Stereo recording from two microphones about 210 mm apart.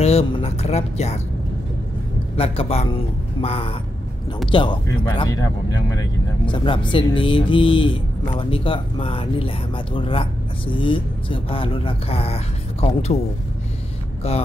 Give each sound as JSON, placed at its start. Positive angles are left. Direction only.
{"t": 0.0, "sound": "speech", "side_deg": 30}
{"t": 2.3, "sound": "speech", "side_deg": 25}
{"t": 14.2, "sound": "speech", "side_deg": 30}